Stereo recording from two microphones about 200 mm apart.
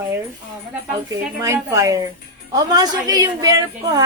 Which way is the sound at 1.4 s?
15° right (ahead or behind).